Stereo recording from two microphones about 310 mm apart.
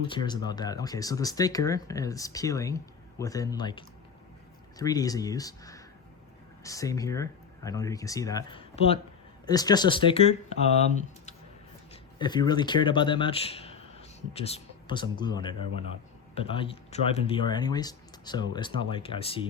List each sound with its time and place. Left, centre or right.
0.1 s speech: centre
12.2 s speech: centre